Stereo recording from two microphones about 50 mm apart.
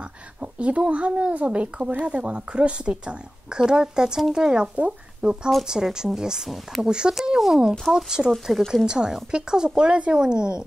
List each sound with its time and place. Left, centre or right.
0.4 s a child's voice: right